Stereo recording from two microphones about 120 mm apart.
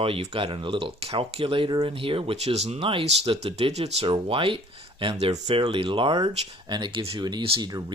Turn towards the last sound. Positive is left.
turn(degrees=-40)  # may be behind; listen again after turning